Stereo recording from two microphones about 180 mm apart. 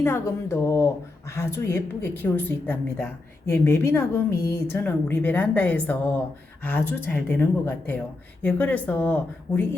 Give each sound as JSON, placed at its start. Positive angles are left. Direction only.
{"t": 0.0, "sound": "a woman's voice", "side_deg": 15}